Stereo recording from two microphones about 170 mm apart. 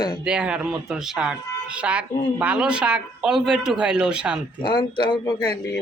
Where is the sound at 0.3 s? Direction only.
5° right (ahead or behind).